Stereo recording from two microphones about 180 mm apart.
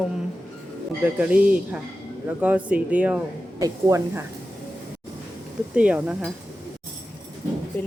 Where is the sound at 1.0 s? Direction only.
10° right (ahead or behind).